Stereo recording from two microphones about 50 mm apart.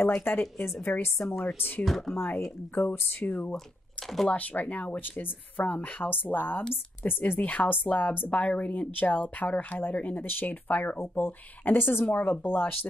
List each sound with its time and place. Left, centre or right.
0.0 s speech: left
1.9 s speech: centre
2.1 s speech: left
7.3 s speech: left
11.0 s speech: left